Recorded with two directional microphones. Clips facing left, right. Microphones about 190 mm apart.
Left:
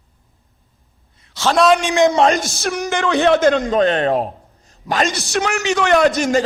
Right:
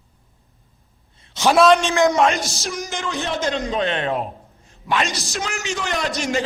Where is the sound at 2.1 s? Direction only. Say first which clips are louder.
Left 3 dB; 35° left (ahead or behind).